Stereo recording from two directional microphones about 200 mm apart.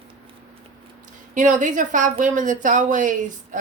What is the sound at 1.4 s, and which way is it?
Speech, 40° right (ahead or behind).